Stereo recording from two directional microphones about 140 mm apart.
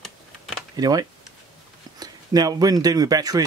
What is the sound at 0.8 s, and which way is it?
Speech, 30° right (ahead or behind).